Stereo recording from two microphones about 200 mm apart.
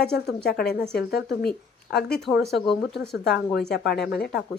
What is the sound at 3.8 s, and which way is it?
Speech, 55° left (ahead or behind).